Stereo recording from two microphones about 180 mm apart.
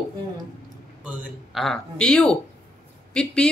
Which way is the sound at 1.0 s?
Centre (ahead or behind).